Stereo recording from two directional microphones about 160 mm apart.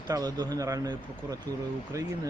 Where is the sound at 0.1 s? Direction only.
25° right (ahead or behind).